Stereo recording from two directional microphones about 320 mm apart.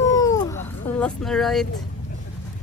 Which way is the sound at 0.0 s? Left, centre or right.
Centre.